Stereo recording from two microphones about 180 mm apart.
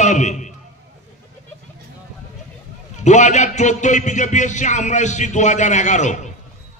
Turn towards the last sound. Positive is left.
turn(degrees=40)  # may be behind; listen again after turning